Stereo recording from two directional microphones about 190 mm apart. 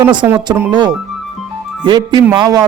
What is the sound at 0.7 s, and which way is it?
Speech, 20° right (ahead or behind).